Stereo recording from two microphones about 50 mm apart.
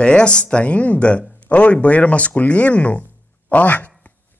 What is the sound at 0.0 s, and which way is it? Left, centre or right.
Speech, left.